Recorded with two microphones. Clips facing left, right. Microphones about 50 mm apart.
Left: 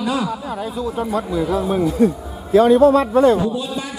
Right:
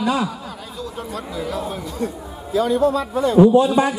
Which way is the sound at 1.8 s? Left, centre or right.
Left.